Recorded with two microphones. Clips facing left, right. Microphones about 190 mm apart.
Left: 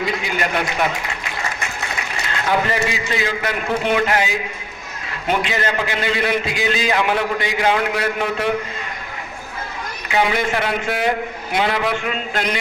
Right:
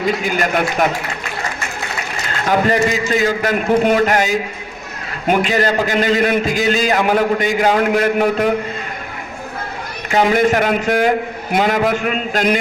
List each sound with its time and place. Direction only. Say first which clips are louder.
0.0 s a man's voice: right 4 dB; 45° right (ahead or behind)
2.5 s a man's voice: right 5 dB; 45° right (ahead or behind)
5.4 s a man's voice: right 6 dB; 40° right (ahead or behind)
10.1 s a man's voice: right 6 dB; 45° right (ahead or behind)